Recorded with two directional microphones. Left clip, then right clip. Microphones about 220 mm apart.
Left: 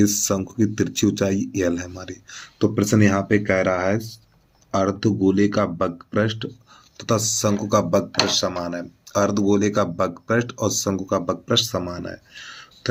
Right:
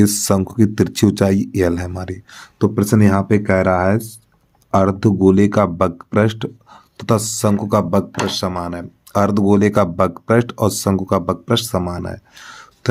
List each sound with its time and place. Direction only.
0.0 s speech: 45° right (ahead or behind)